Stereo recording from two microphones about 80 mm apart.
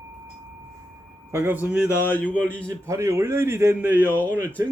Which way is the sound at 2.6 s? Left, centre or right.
Right.